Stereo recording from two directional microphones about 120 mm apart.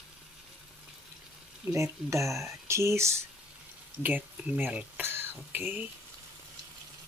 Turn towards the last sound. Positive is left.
turn(degrees=-15)  # may be behind; listen again after turning